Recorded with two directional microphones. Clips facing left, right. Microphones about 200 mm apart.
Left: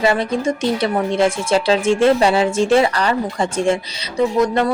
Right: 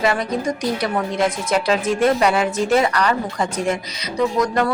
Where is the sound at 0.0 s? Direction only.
25° left (ahead or behind).